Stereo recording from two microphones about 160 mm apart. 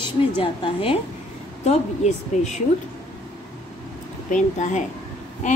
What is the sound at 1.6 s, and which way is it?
Speech, 45° left (ahead or behind).